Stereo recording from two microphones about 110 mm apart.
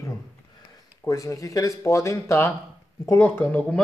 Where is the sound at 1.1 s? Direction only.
30° left (ahead or behind).